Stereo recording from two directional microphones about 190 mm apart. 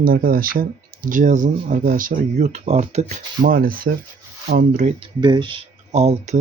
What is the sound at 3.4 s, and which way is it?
Speech, 50° right (ahead or behind).